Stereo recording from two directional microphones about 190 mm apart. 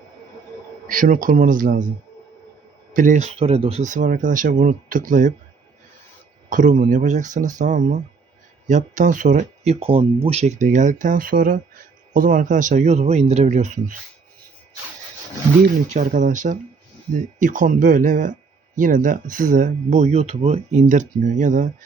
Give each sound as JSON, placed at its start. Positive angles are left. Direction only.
{"t": 0.9, "sound": "speech", "side_deg": -45}
{"t": 2.9, "sound": "speech", "side_deg": -40}
{"t": 6.5, "sound": "speech", "side_deg": -45}
{"t": 15.9, "sound": "speech", "side_deg": -40}